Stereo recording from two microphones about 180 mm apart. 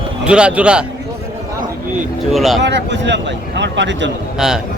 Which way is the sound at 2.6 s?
75° right (ahead or behind).